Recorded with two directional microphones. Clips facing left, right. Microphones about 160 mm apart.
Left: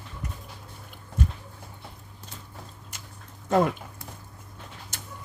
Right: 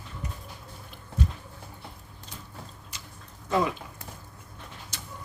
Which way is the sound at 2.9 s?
50° left (ahead or behind).